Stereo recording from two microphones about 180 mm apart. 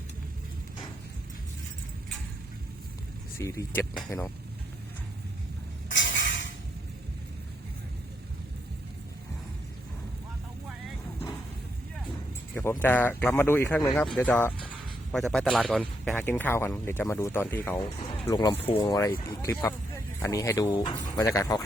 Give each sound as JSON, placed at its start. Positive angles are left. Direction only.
{"t": 3.3, "sound": "speech", "side_deg": 15}
{"t": 5.9, "sound": "music", "side_deg": 90}
{"t": 12.5, "sound": "speech", "side_deg": 10}
{"t": 18.3, "sound": "speech", "side_deg": 25}
{"t": 19.0, "sound": "speech", "side_deg": 15}